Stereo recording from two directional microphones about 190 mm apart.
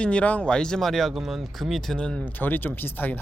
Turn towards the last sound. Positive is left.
turn(degrees=10)  # may be behind; listen again after turning